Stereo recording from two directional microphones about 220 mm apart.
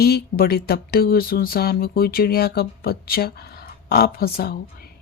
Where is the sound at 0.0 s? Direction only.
45° left (ahead or behind).